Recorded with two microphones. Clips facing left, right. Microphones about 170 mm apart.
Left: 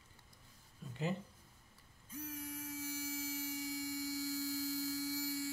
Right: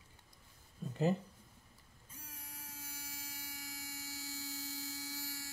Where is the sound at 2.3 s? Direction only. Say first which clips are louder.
Left 11 dB; 35° right (ahead or behind).